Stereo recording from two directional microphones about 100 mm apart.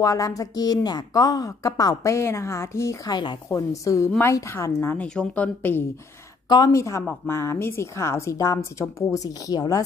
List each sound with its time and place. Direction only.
0.0 s speech: 35° left (ahead or behind)
3.1 s a woman's voice: 45° left (ahead or behind)
3.4 s speech: 35° left (ahead or behind)
6.7 s speech: 30° left (ahead or behind)